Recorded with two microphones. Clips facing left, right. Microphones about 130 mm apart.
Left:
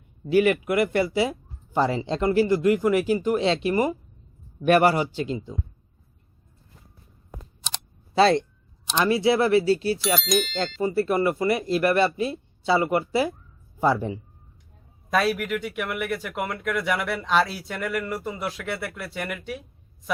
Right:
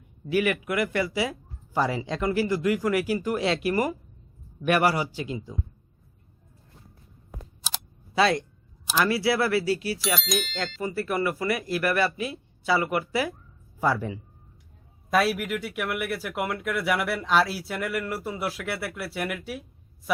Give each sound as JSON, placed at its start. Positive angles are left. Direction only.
{"t": 0.3, "sound": "speech", "side_deg": 30}
{"t": 7.6, "sound": "camera", "side_deg": 0}
{"t": 8.1, "sound": "speech", "side_deg": 30}
{"t": 10.2, "sound": "speech", "side_deg": 0}
{"t": 10.8, "sound": "speech", "side_deg": 25}
{"t": 15.1, "sound": "speech", "side_deg": -5}